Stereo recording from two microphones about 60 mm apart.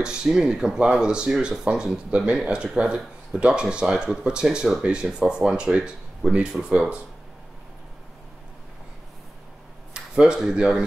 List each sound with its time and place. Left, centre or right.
0.0 s speech: centre
2.0 s speech: right
9.9 s speech: centre